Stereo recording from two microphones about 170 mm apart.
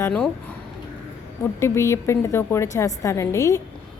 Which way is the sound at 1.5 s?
15° left (ahead or behind).